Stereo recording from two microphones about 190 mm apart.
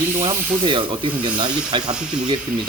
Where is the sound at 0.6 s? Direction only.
25° right (ahead or behind).